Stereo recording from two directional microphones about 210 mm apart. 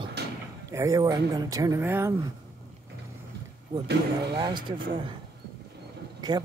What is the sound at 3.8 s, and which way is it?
Speech, 50° right (ahead or behind).